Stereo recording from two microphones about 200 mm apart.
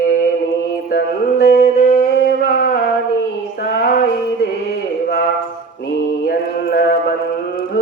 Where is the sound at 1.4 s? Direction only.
45° left (ahead or behind).